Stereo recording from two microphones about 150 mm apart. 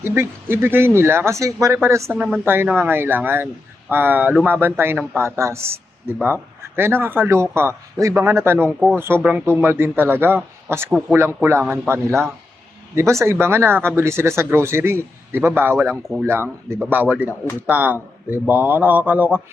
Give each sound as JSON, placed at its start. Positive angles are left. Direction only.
{"t": 0.0, "sound": "speech", "side_deg": -15}
{"t": 2.1, "sound": "speech", "side_deg": -10}